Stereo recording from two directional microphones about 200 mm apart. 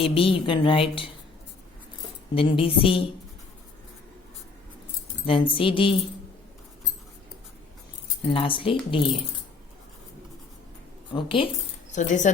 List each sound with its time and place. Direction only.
0.0 s speech: 30° left (ahead or behind)
2.3 s speech: 25° left (ahead or behind)
5.2 s speech: 25° left (ahead or behind)
8.3 s speech: 25° left (ahead or behind)
11.1 s speech: 25° left (ahead or behind)
11.9 s speech: 40° left (ahead or behind)